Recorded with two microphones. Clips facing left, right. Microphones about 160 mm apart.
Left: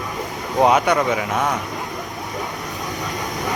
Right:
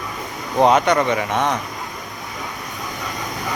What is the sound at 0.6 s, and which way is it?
Speech, 10° left (ahead or behind).